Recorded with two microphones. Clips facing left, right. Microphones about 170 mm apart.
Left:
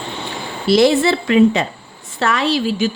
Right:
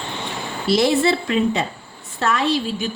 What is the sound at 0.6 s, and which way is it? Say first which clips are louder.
A woman's voice: left 4 dB; 90° left.